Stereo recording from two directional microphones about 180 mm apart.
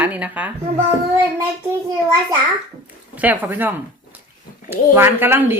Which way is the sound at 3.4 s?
10° right (ahead or behind).